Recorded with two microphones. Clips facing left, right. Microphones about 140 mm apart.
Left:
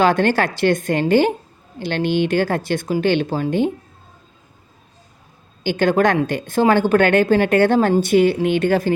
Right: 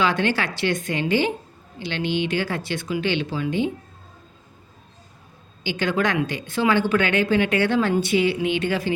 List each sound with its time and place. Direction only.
0.0 s a woman's voice: 45° left (ahead or behind)
5.6 s a woman's voice: 50° left (ahead or behind)